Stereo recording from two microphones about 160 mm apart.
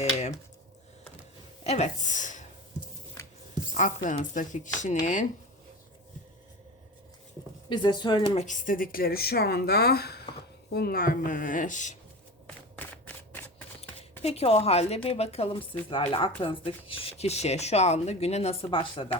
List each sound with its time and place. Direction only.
0.0 s a sound: 45° left (ahead or behind)
1.6 s a woman's voice: 40° left (ahead or behind)
3.8 s speech: 55° left (ahead or behind)
7.7 s speech: 30° left (ahead or behind)
8.4 s speech: 55° left (ahead or behind)
12.7 s shuffling cards: 10° left (ahead or behind)
14.2 s speech: 40° left (ahead or behind)